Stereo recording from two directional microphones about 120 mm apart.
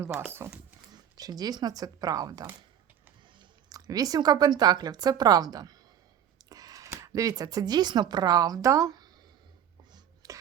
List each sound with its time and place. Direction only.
0.3 s speech: 20° right (ahead or behind)
0.9 s a woman's voice: 35° right (ahead or behind)
3.7 s a woman's voice: 30° right (ahead or behind)
10.2 s a sound: 30° right (ahead or behind)